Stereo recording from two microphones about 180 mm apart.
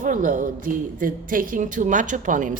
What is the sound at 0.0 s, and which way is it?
Speech, 45° right (ahead or behind).